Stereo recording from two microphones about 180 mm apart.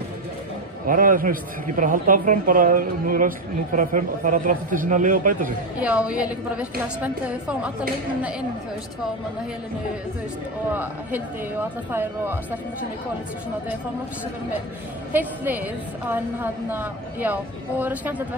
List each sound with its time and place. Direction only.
0.8 s a man's voice: 50° right (ahead or behind)
5.8 s a woman's voice: 5° right (ahead or behind)
10.7 s a woman's voice: 10° right (ahead or behind)
15.1 s a woman's voice: 10° right (ahead or behind)
16.7 s a woman's voice: 10° right (ahead or behind)